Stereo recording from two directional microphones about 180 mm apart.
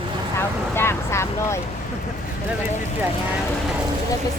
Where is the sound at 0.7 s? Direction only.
15° left (ahead or behind).